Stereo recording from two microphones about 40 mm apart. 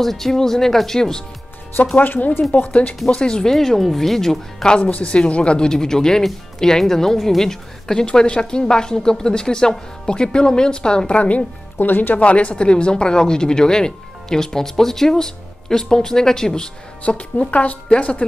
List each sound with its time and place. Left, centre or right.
0.0 s a woman's voice: centre
2.0 s a woman's voice: left
3.1 s a woman's voice: left
3.4 s a woman's voice: centre
4.6 s a woman's voice: left
5.7 s a woman's voice: centre
8.0 s a woman's voice: left
11.8 s speech: left
12.2 s a woman's voice: left; by 16.7 s centre
17.0 s a woman's voice: left